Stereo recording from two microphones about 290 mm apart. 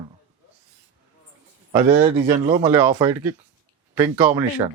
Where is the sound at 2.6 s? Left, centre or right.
Centre.